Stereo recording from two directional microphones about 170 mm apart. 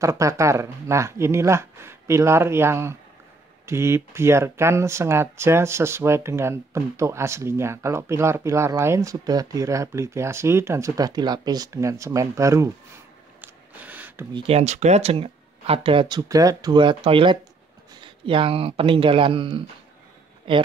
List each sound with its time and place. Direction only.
0.0 s speech: 20° right (ahead or behind)
13.4 s a sound: 10° right (ahead or behind)
14.3 s speech: 35° right (ahead or behind)